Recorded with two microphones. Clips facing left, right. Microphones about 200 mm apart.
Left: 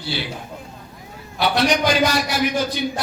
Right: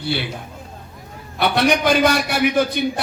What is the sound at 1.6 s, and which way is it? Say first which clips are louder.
A man's voice: right 3 dB; 60° right (ahead or behind).